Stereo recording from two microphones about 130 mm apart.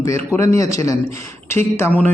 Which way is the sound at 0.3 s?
25° left (ahead or behind).